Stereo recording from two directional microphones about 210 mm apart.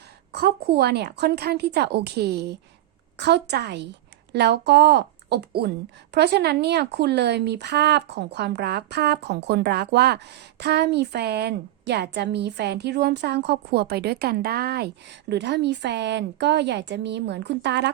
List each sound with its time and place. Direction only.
0.3 s speech: 50° right (ahead or behind)